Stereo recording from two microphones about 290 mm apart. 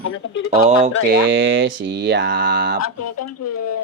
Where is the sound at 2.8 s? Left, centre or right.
Left.